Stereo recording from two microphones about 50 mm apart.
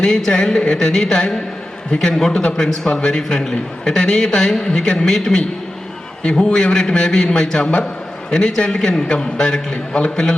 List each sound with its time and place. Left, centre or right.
0.0 s a man's voice: centre